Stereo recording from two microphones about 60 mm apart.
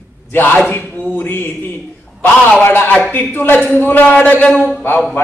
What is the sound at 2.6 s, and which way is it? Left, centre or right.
A man's voice, left.